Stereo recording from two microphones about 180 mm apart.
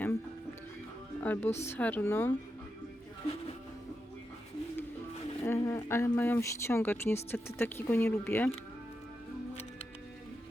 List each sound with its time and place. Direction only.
1.2 s speech: 10° left (ahead or behind)
1.5 s a woman's voice: 35° left (ahead or behind)
1.7 s speech: 10° left (ahead or behind)
5.4 s speech: 15° left (ahead or behind)